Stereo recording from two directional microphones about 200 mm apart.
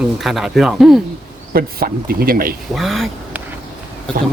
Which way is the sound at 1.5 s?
50° right (ahead or behind).